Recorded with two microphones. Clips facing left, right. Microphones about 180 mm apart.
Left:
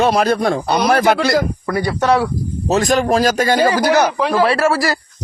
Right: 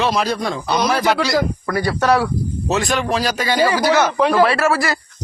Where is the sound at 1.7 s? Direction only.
20° left (ahead or behind).